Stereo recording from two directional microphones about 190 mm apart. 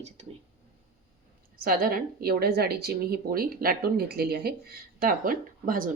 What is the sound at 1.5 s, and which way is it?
A woman's voice, 50° right (ahead or behind).